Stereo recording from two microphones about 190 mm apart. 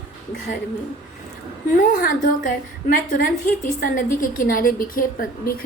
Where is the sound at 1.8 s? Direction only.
45° left (ahead or behind).